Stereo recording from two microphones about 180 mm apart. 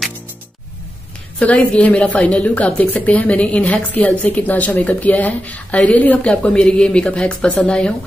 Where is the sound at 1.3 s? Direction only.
10° left (ahead or behind).